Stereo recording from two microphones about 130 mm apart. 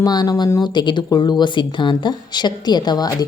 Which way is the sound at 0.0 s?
30° left (ahead or behind).